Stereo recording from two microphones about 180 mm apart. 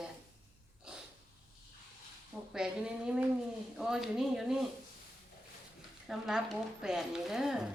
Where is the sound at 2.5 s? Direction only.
5° right (ahead or behind).